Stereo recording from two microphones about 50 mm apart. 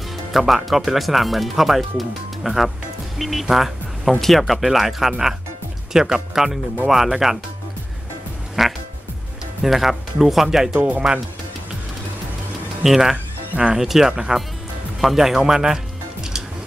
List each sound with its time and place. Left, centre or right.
0.3 s speech: centre
8.6 s speech: centre
12.8 s speech: centre
13.1 s music: right
13.7 s speech: centre